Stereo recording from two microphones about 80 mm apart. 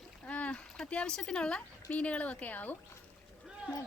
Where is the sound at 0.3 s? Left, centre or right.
Centre.